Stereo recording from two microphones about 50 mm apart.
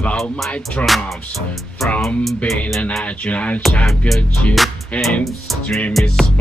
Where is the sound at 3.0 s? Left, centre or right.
Left.